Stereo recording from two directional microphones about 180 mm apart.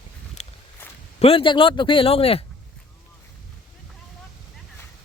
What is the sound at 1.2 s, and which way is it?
Speech, 30° left (ahead or behind).